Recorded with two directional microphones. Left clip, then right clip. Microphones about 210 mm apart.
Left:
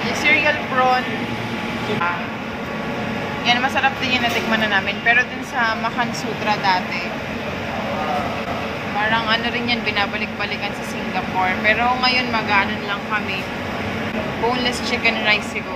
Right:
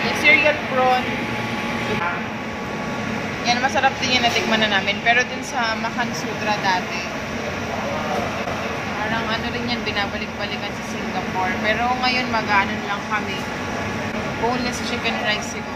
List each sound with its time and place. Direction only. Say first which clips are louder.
0.2 s speech: right 1 dB; 10° right (ahead or behind)
3.4 s speech: left 1 dB; 15° right (ahead or behind)
9.3 s speech: left 4 dB; 5° left (ahead or behind)
11.6 s speech: left 3 dB; 5° right (ahead or behind)